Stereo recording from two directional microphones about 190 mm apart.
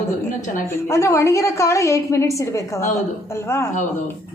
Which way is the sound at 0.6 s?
15° left (ahead or behind).